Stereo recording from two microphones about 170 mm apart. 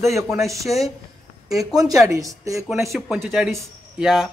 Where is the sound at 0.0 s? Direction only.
15° right (ahead or behind).